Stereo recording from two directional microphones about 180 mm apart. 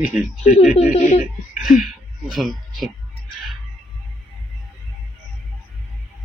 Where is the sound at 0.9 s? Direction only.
35° left (ahead or behind).